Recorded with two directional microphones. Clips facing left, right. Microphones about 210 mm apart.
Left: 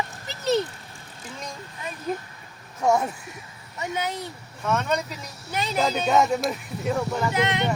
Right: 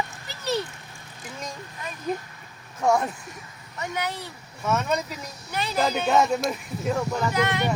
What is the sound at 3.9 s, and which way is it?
Speech, 20° left (ahead or behind).